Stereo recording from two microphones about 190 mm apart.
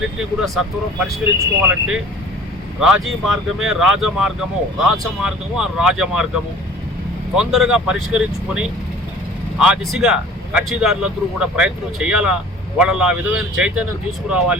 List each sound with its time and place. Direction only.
0.2 s speech: centre (ahead or behind)
3.2 s speech: 5° right (ahead or behind)